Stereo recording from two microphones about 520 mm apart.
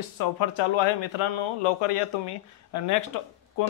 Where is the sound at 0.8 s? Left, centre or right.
Left.